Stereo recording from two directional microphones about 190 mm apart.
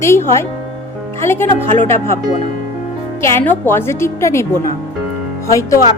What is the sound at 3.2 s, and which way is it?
A woman's voice, 10° left (ahead or behind).